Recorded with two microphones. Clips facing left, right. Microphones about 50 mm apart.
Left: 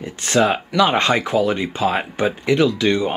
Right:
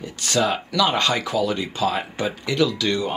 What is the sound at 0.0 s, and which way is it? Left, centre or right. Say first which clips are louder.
Speech: left 4 dB; left.